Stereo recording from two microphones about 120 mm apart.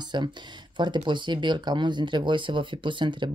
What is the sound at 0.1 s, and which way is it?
Speech, 40° right (ahead or behind).